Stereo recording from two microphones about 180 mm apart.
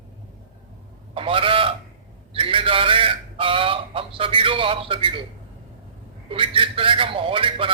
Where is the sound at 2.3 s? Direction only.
30° right (ahead or behind).